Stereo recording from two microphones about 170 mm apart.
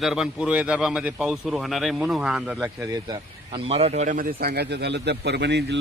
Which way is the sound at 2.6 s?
25° right (ahead or behind).